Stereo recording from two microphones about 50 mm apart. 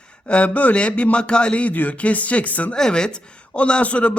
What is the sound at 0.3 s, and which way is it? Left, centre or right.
A man's voice, left.